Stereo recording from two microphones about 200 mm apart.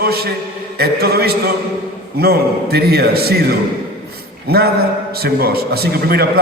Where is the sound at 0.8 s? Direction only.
50° right (ahead or behind).